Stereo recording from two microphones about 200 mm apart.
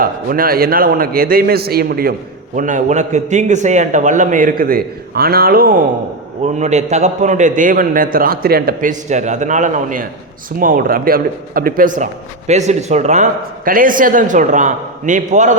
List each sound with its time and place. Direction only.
0.0 s a man's voice: 45° right (ahead or behind)
2.6 s a man's voice: 40° right (ahead or behind)
6.4 s a man's voice: 35° right (ahead or behind)